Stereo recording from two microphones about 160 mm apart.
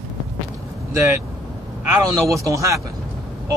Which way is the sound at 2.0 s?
25° right (ahead or behind).